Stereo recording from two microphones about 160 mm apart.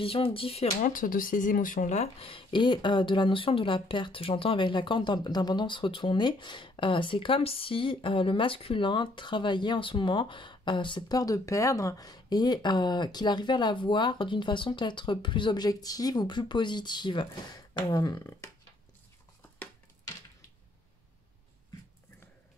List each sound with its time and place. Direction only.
0.0 s speech: 35° left (ahead or behind)
0.8 s speech: 60° left (ahead or behind); by 18.5 s 20° left (ahead or behind)